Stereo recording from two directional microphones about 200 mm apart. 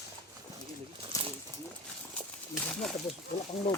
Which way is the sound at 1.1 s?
15° left (ahead or behind).